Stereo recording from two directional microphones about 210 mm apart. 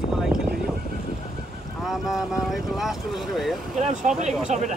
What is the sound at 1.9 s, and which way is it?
Speech, centre (ahead or behind).